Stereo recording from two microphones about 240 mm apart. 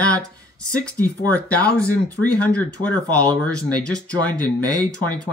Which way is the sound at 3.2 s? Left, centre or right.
Centre.